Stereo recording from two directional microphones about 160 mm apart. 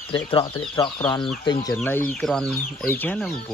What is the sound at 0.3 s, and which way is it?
Speech, 30° left (ahead or behind).